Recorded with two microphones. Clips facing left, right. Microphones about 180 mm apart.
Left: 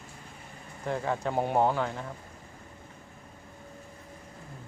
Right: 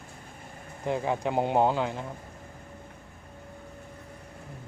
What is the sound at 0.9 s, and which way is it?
Speech, 15° right (ahead or behind).